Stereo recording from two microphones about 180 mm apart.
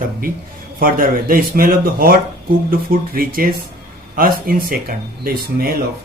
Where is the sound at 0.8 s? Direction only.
50° right (ahead or behind).